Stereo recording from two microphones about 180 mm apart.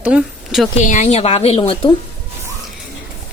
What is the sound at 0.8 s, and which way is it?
A woman's voice, 40° left (ahead or behind).